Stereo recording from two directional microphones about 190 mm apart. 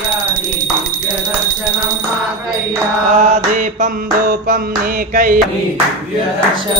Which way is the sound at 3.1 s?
40° right (ahead or behind).